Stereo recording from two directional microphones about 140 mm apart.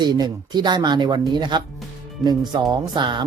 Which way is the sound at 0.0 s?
30° right (ahead or behind).